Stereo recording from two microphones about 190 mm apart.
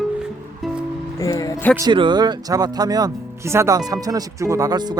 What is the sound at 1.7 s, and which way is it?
Speech, 20° right (ahead or behind).